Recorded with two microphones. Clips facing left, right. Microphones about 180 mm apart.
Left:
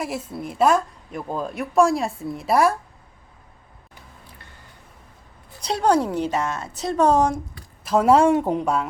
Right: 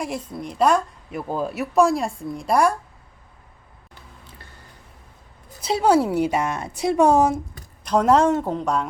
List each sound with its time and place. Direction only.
0.0 s a woman's voice: 5° left (ahead or behind)
5.5 s a woman's voice: 5° right (ahead or behind)
7.9 s speech: 5° left (ahead or behind)